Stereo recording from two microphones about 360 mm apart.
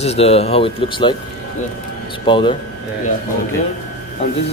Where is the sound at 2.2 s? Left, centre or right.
Centre.